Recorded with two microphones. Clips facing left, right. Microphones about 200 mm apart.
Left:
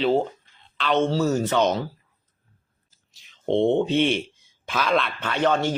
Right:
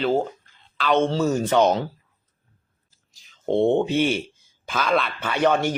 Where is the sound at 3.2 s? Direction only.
Centre (ahead or behind).